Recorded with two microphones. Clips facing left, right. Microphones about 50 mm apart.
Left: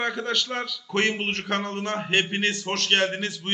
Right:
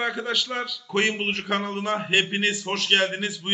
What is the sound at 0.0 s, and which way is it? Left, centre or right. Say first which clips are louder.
A man's voice: even; centre.